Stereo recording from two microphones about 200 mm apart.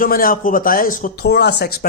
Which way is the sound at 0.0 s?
45° left (ahead or behind).